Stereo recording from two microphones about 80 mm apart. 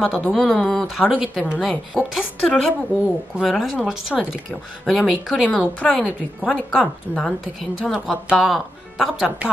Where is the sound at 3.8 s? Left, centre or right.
Centre.